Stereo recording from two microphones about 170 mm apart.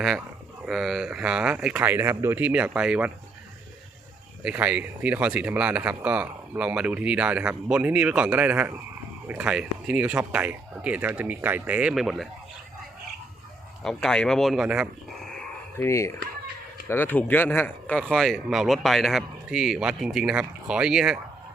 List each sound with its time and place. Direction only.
0.6 s speech: centre (ahead or behind)
4.4 s speech: 10° right (ahead or behind)
13.8 s speech: 5° left (ahead or behind)
15.8 s speech: 15° left (ahead or behind); by 21.2 s 5° right (ahead or behind)